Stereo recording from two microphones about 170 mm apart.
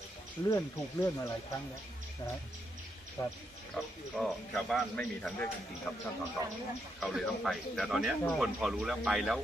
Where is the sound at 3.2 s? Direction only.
15° left (ahead or behind).